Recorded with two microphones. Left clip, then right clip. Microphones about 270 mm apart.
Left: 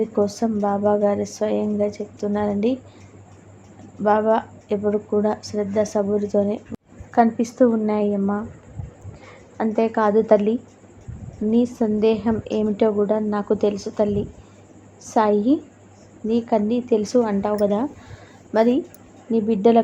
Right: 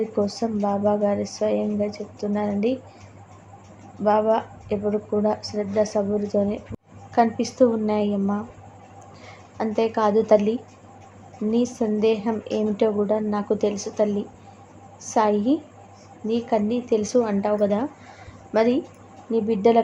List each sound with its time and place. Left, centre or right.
0.2 s a woman's voice: centre
4.0 s a woman's voice: centre
9.6 s a woman's voice: centre